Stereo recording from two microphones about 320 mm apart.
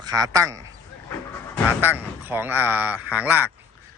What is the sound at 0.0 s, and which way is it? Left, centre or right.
Speech, centre.